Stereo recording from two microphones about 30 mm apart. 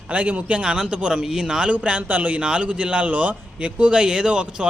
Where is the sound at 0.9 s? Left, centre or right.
Right.